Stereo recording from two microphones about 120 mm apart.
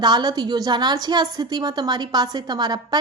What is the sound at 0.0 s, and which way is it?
A woman's voice, 35° right (ahead or behind).